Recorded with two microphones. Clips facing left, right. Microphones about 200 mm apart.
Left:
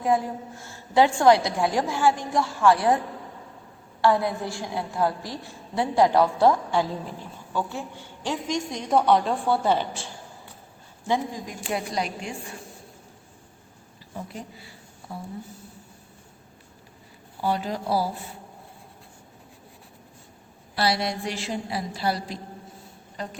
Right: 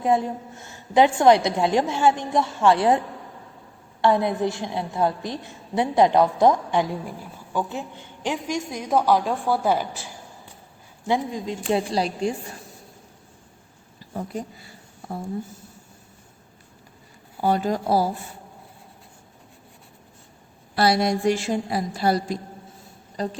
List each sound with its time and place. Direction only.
0.0 s a woman's voice: 20° right (ahead or behind)
4.0 s a woman's voice: 20° right (ahead or behind); by 9.8 s 5° right (ahead or behind)
11.0 s a woman's voice: 15° right (ahead or behind)
11.7 s a woman's voice: 30° right (ahead or behind)
17.4 s a woman's voice: 45° right (ahead or behind)
20.7 s a woman's voice: 50° right (ahead or behind)
23.1 s a sound: 35° right (ahead or behind)